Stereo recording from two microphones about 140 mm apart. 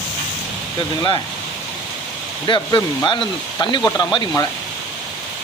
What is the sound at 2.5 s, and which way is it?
Speech, 35° left (ahead or behind).